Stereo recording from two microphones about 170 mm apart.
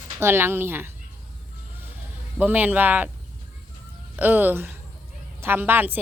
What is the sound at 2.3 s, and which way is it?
Speech, 10° right (ahead or behind).